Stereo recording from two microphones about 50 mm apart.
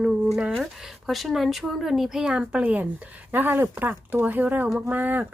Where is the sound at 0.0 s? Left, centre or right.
Centre.